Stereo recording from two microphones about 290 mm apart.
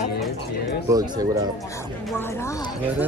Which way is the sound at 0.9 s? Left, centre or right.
Centre.